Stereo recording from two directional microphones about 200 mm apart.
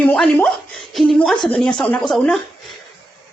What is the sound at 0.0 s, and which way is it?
A woman's voice, 5° left (ahead or behind).